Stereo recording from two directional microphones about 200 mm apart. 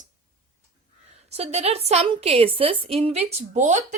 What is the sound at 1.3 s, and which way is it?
A woman's voice, 30° right (ahead or behind).